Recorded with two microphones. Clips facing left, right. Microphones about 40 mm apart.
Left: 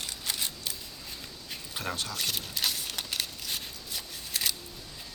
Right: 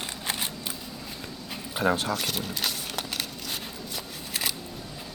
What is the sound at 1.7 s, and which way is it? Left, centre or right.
Speech, right.